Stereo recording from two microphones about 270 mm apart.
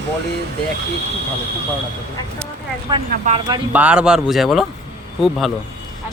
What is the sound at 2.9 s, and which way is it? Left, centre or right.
Speech, centre.